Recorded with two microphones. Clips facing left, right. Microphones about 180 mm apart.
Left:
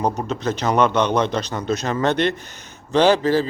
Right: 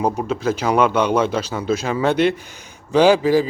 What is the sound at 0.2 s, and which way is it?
Speech, 5° right (ahead or behind).